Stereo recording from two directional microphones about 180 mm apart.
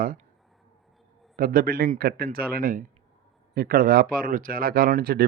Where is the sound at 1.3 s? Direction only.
55° right (ahead or behind).